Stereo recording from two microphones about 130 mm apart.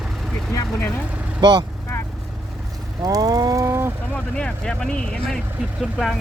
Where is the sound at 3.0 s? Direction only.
30° right (ahead or behind).